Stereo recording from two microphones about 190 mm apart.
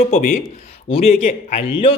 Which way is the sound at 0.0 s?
35° left (ahead or behind).